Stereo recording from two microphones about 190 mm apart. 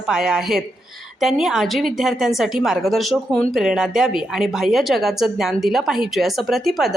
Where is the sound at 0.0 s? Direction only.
5° right (ahead or behind).